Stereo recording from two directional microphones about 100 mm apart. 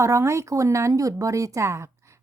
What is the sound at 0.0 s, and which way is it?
Speech, 30° right (ahead or behind).